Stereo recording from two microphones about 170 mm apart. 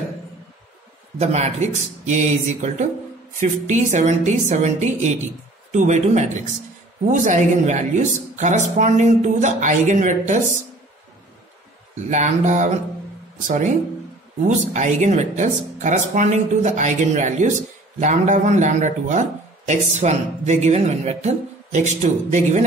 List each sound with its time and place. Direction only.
1.2 s speech: 40° right (ahead or behind)
12.1 s speech: 45° right (ahead or behind)